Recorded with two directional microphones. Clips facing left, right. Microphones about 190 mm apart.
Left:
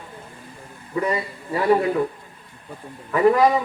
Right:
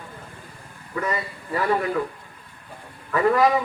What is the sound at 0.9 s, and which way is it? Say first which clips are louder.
A man's voice: left 4 dB; 20° left (ahead or behind).